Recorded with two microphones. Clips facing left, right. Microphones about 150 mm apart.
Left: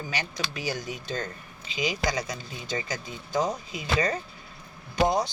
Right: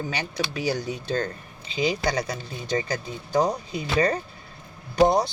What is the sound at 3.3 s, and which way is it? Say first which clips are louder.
Speech: right 5 dB; 35° right (ahead or behind).